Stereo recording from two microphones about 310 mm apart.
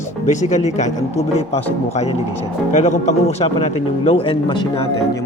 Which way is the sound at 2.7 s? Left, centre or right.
Left.